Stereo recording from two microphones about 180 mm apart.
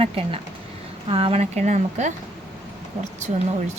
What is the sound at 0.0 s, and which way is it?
Speech, 30° right (ahead or behind).